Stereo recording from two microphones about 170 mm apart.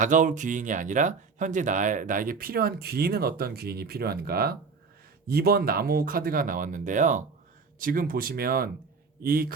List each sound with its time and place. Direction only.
0.0 s speech: 50° right (ahead or behind)